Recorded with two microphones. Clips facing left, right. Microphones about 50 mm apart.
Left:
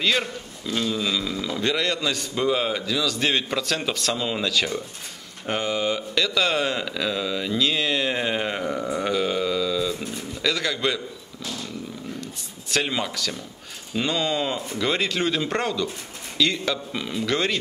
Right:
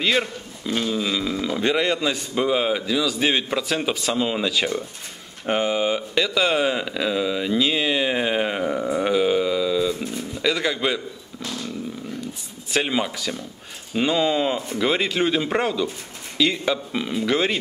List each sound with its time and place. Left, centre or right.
0.0 s speech: centre
12.2 s a sound: centre
13.9 s speech: centre